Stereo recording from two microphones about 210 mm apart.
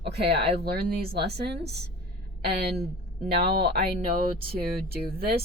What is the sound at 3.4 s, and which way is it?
Speech, 50° right (ahead or behind).